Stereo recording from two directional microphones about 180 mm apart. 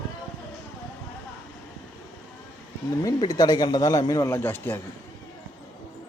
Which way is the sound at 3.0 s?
20° left (ahead or behind).